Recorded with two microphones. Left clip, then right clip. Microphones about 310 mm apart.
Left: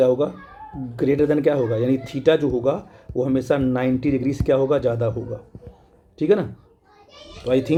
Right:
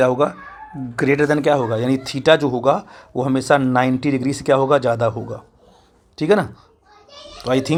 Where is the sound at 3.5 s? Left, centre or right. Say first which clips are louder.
Right 9 dB; centre.